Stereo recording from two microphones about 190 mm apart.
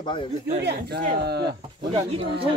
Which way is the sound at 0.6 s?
60° right (ahead or behind).